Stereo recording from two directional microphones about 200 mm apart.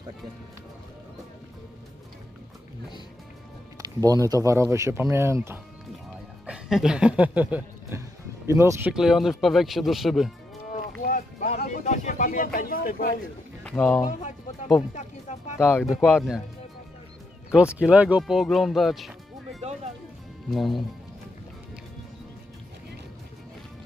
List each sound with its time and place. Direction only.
3.7 s speech: 15° right (ahead or behind)
8.9 s speech: centre (ahead or behind)
11.1 s a sound: 40° left (ahead or behind)
12.5 s speech: 45° left (ahead or behind)
13.7 s speech: 5° left (ahead or behind)
15.0 s music: 35° left (ahead or behind)
15.5 s speech: 10° left (ahead or behind)
15.8 s speech: centre (ahead or behind)
17.5 s speech: 5° right (ahead or behind)